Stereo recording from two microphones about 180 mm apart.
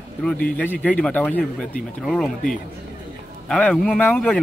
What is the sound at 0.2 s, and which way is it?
A man's voice, 5° left (ahead or behind).